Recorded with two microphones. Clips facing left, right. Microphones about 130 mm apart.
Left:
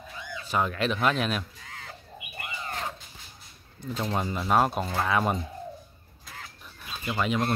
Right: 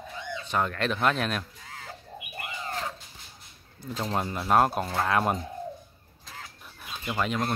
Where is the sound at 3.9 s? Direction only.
Centre (ahead or behind).